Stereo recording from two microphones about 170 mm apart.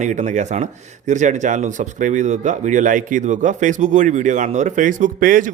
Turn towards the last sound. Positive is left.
turn(degrees=-50)  # may be behind; listen again after turning